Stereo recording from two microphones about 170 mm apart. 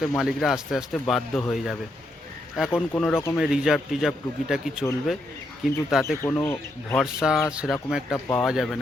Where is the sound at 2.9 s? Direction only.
10° left (ahead or behind).